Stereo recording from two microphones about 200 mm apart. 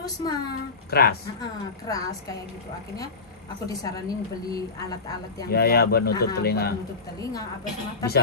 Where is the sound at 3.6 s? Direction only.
20° left (ahead or behind).